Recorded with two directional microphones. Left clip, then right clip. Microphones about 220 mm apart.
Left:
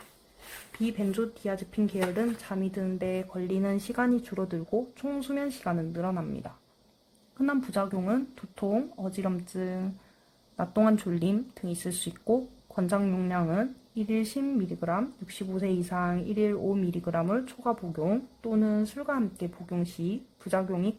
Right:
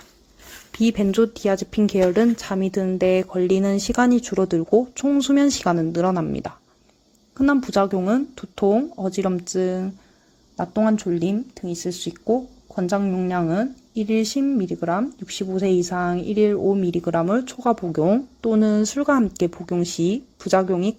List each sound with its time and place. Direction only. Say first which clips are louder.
0.7 s speech: right 11 dB; 35° right (ahead or behind)
10.6 s speech: right 5 dB; 10° right (ahead or behind)